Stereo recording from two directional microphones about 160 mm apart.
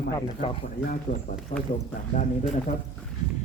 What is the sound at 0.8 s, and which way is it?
Speech, 60° left (ahead or behind).